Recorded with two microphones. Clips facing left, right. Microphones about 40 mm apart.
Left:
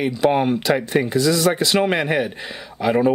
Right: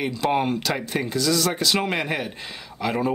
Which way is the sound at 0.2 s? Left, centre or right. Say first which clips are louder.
Left 5 dB; centre.